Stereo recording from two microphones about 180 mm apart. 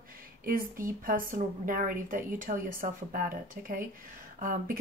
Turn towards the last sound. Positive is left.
turn(degrees=-50)  # may be behind; listen again after turning